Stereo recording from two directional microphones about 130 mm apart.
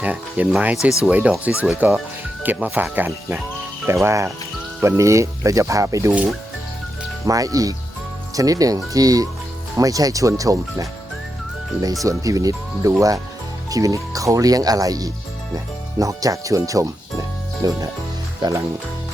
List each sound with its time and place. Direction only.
0.0 s speech: 10° right (ahead or behind)
7.3 s speech: 25° right (ahead or behind)